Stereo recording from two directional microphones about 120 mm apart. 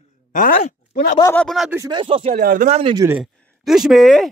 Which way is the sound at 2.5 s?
80° right.